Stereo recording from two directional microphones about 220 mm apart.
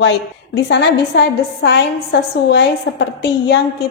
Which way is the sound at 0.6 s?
50° left (ahead or behind).